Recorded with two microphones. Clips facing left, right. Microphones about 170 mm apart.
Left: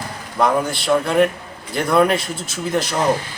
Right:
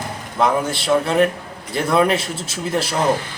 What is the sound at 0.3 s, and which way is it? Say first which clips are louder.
A man's voice: even; centre (ahead or behind).